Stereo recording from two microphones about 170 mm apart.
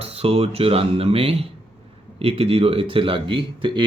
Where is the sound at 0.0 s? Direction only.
35° right (ahead or behind).